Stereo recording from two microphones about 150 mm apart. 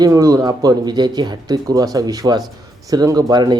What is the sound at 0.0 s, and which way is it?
Speech, 25° right (ahead or behind).